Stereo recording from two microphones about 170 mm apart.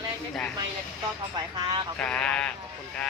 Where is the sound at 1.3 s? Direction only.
25° right (ahead or behind).